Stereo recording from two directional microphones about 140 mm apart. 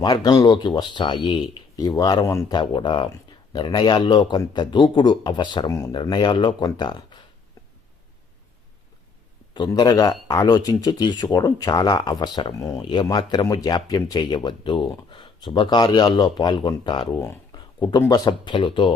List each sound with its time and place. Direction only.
0.0 s speech: 30° left (ahead or behind)
2.6 s speech: 35° left (ahead or behind)
9.6 s speech: 30° left (ahead or behind)
17.2 s speech: 15° left (ahead or behind)
17.5 s a sound: 30° left (ahead or behind)
18.1 s speech: 30° left (ahead or behind)